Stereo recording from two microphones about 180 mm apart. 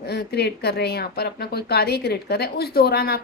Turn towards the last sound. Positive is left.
turn(degrees=60)  # may be behind; listen again after turning